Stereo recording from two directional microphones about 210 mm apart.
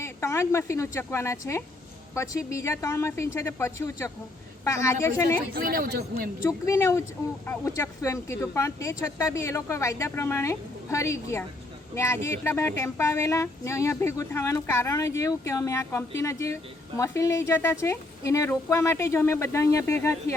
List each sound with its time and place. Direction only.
0.0 s speech: 15° left (ahead or behind)
5.5 s a man's voice: 45° right (ahead or behind)
6.7 s speech: 15° left (ahead or behind)